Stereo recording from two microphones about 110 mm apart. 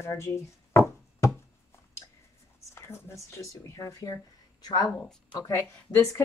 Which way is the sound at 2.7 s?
25° left (ahead or behind).